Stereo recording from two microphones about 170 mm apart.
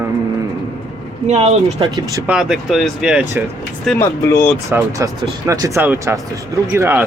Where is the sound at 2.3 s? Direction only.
5° right (ahead or behind).